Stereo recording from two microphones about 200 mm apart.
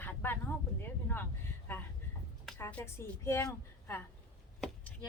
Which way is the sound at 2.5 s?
10° left (ahead or behind).